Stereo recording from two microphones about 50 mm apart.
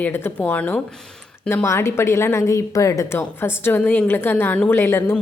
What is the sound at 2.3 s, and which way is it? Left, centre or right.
Speech, left.